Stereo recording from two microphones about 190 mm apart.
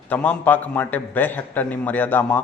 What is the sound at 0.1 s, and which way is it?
A man's voice, 10° left (ahead or behind).